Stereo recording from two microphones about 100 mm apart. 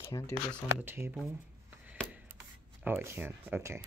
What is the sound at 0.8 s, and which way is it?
Speech, 25° right (ahead or behind).